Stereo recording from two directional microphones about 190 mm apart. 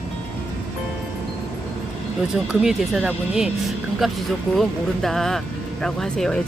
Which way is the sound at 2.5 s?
Centre (ahead or behind).